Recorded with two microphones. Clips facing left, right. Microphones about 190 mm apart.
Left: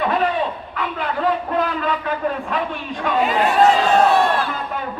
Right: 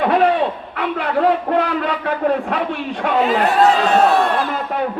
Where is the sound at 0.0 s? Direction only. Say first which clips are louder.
Right 5 dB; 65° right (ahead or behind).